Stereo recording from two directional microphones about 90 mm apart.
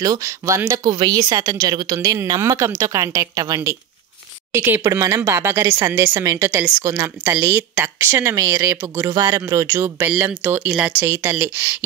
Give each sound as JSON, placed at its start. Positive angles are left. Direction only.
{"t": 0.0, "sound": "speech", "side_deg": -35}
{"t": 0.7, "sound": "a woman's voice", "side_deg": -45}
{"t": 4.5, "sound": "speech", "side_deg": -25}
{"t": 4.8, "sound": "speech", "side_deg": -40}